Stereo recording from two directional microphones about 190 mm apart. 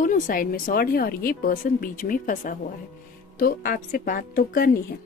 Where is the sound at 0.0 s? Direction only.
45° left (ahead or behind).